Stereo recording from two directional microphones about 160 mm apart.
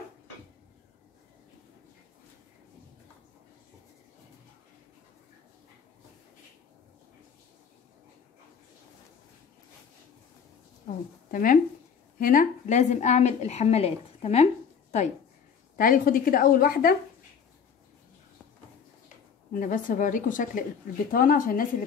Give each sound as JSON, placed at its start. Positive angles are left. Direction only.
{"t": 10.9, "sound": "a sound", "side_deg": 60}
{"t": 11.3, "sound": "a woman's voice", "side_deg": 60}
{"t": 15.8, "sound": "a woman's voice", "side_deg": 60}
{"t": 19.5, "sound": "a woman's voice", "side_deg": 55}